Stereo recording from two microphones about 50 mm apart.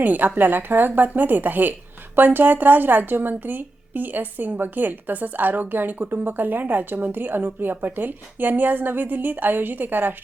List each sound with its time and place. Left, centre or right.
0.0 s a woman's voice: right